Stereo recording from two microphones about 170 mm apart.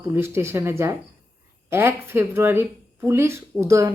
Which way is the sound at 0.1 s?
15° right (ahead or behind).